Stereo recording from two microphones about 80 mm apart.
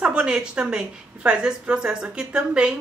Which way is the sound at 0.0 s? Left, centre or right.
Centre.